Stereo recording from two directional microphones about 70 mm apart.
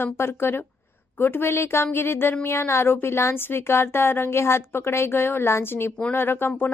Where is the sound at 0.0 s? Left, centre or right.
Left.